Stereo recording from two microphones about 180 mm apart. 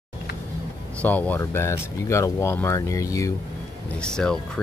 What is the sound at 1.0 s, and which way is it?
Speech, 10° left (ahead or behind).